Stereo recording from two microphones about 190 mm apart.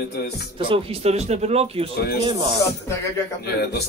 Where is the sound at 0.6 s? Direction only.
25° right (ahead or behind).